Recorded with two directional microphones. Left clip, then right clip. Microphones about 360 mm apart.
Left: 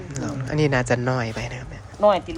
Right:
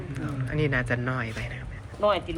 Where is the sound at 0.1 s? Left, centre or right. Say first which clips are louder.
Left 6 dB; centre.